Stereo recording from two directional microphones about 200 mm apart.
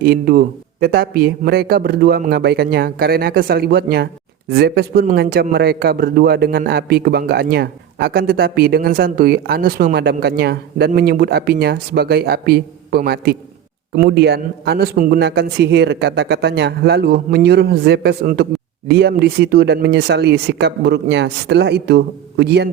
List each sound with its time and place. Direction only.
0.0 s a man's voice: 50° right (ahead or behind)